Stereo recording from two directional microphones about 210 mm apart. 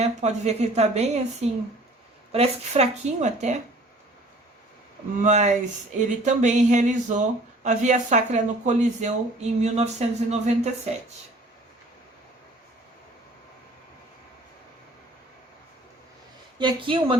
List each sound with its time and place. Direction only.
0.0 s speech: 30° right (ahead or behind)
5.2 s speech: 35° right (ahead or behind)
16.6 s a woman's voice: 25° right (ahead or behind)